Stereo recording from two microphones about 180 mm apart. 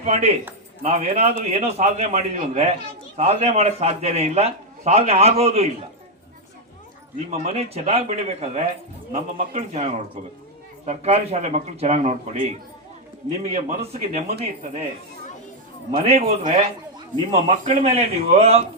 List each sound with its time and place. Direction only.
0.0 s a man's voice: 35° right (ahead or behind)
7.3 s a man's voice: 35° right (ahead or behind)
16.0 s a man's voice: 35° right (ahead or behind)